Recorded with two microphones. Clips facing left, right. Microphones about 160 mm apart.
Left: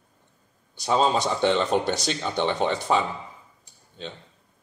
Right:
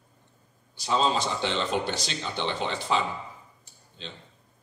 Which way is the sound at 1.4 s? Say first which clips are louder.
Left 6 dB; 50° left (ahead or behind).